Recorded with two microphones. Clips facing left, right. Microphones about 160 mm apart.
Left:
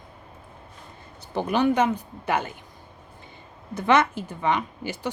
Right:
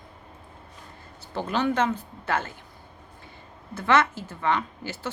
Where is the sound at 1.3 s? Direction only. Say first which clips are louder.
Left 4 dB; 15° left (ahead or behind).